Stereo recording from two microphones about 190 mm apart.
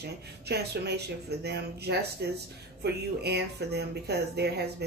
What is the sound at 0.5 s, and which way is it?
Speech, 60° right (ahead or behind).